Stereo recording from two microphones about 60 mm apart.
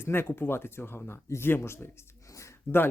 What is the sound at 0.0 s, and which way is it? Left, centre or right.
Speech, left.